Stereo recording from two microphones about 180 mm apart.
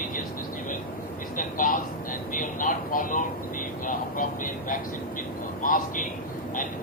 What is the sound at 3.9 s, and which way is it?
Speech, 50° left (ahead or behind).